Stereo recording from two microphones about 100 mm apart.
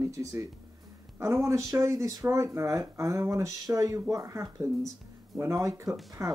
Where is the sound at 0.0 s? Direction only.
30° right (ahead or behind).